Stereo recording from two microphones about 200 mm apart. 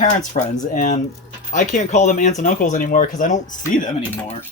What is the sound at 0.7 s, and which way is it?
Speech, 40° left (ahead or behind).